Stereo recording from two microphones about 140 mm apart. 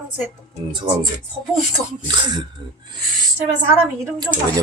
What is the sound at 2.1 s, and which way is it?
Speech, 30° right (ahead or behind).